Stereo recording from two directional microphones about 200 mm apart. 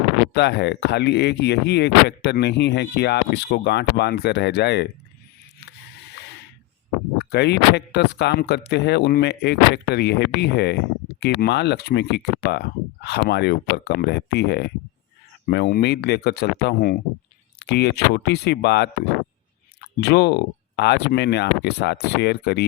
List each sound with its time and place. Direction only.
0.3 s speech: 55° left (ahead or behind)
7.3 s speech: 55° left (ahead or behind)